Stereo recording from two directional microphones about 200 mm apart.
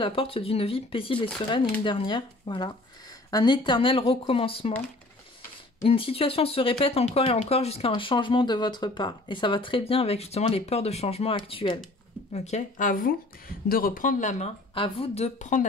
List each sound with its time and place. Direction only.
0.0 s speech: 25° left (ahead or behind)
5.9 s speech: 30° left (ahead or behind)